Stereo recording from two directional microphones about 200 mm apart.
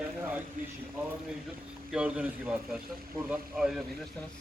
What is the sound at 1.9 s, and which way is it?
Speech, 5° right (ahead or behind).